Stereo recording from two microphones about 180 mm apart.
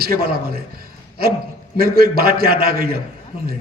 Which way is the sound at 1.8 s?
55° right (ahead or behind).